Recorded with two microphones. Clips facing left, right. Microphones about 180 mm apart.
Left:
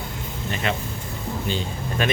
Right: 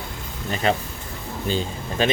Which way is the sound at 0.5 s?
35° right (ahead or behind).